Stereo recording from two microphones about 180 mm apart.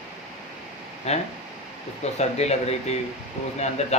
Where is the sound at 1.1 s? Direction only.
35° left (ahead or behind).